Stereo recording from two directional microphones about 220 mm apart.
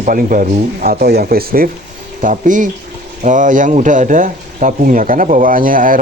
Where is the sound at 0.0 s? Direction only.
35° right (ahead or behind).